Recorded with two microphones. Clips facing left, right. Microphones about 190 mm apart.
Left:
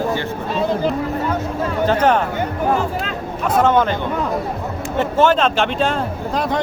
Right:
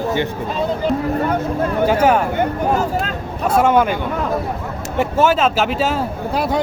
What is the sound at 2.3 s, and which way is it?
Speech, 45° right (ahead or behind).